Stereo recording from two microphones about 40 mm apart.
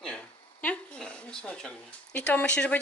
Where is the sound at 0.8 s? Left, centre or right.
Left.